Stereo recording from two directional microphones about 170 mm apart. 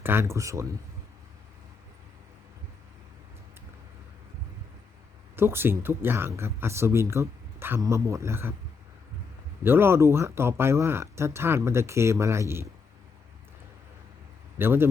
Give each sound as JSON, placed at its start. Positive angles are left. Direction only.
{"t": 0.0, "sound": "speech", "side_deg": -15}
{"t": 5.4, "sound": "speech", "side_deg": -15}
{"t": 9.6, "sound": "speech", "side_deg": -15}
{"t": 14.6, "sound": "speech", "side_deg": -15}